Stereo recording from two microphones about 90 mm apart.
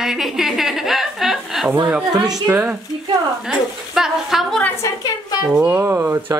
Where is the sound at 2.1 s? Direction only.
45° right (ahead or behind).